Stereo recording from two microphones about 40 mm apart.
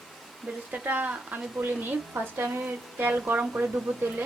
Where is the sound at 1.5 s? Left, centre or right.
Right.